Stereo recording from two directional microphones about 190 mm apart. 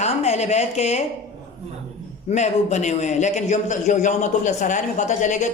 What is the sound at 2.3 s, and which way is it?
A man's voice, 35° left (ahead or behind).